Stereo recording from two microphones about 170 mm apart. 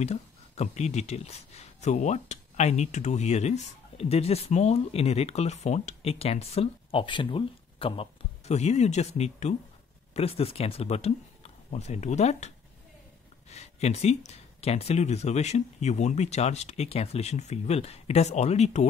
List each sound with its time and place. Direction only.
0.0 s speech: 40° left (ahead or behind)